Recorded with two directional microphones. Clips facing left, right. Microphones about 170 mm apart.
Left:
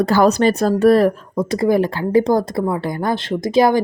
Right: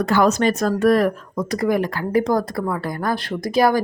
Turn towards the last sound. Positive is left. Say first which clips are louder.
# left 3 dB
turn(degrees=25)  # may be behind; listen again after turning